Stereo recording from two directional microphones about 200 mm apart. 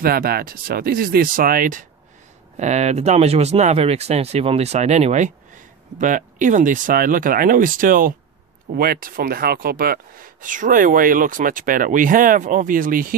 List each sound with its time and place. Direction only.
0.0 s speech: 50° right (ahead or behind)